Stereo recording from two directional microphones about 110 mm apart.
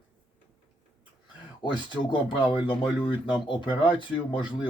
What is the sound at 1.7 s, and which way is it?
Speech, 45° left (ahead or behind).